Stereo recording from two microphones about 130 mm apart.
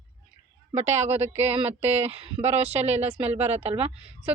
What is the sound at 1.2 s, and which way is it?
Speech, 15° right (ahead or behind).